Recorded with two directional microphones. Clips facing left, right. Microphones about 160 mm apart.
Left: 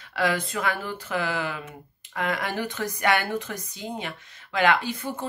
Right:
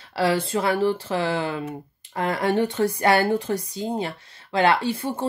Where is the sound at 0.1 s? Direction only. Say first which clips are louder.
Right 4 dB; 30° right (ahead or behind).